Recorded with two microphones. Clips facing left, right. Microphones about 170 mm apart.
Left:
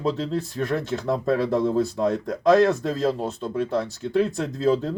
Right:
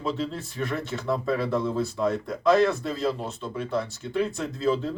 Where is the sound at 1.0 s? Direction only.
40° left (ahead or behind).